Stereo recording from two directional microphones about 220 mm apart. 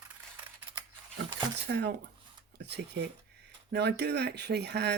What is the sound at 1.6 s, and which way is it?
Speech, 50° right (ahead or behind).